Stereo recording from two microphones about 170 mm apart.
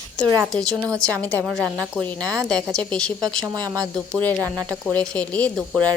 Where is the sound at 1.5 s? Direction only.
10° right (ahead or behind).